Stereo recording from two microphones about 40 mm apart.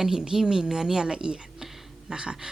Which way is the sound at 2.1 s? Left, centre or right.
Centre.